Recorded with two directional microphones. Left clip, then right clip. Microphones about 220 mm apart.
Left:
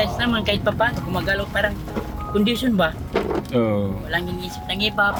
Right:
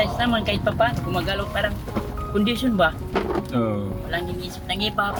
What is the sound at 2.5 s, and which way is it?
Speech, 25° left (ahead or behind).